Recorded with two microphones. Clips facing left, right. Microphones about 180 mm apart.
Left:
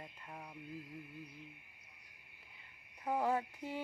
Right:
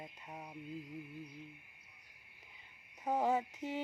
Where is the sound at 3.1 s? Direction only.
20° right (ahead or behind).